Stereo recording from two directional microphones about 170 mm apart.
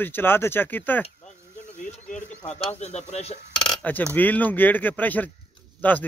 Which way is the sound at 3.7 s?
10° left (ahead or behind).